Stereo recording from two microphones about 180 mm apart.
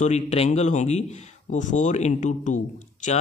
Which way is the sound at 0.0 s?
40° left (ahead or behind).